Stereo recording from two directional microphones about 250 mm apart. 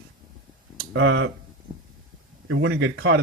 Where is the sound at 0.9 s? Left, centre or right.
Right.